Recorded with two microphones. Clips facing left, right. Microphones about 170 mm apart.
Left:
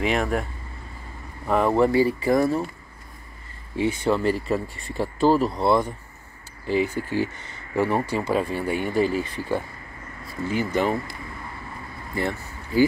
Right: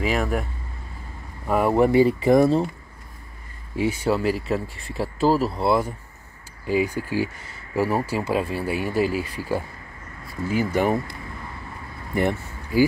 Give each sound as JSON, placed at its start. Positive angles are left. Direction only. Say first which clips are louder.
{"t": 0.0, "sound": "speech", "louder": "even", "side_deg": -5}
{"t": 1.5, "sound": "speech", "louder": "right 1 dB", "side_deg": -10}
{"t": 3.7, "sound": "speech", "louder": "even", "side_deg": -10}
{"t": 12.2, "sound": "speech", "louder": "right 4 dB", "side_deg": -20}